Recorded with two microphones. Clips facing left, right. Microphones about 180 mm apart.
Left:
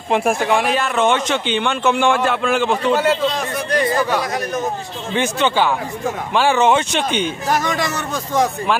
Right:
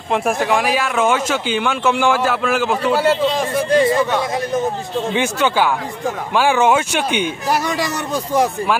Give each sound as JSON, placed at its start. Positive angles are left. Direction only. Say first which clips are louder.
{"t": 0.1, "sound": "speech", "louder": "left 1 dB", "side_deg": 0}
{"t": 3.3, "sound": "speech", "louder": "right 5 dB", "side_deg": -25}
{"t": 5.1, "sound": "a man's voice", "louder": "left 1 dB", "side_deg": -10}